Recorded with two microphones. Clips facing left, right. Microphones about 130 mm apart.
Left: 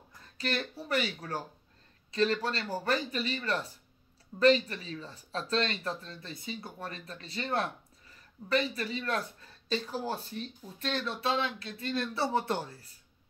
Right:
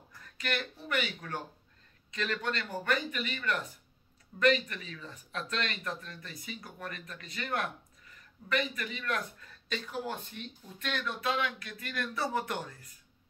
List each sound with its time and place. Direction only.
0.2 s speech: 30° left (ahead or behind)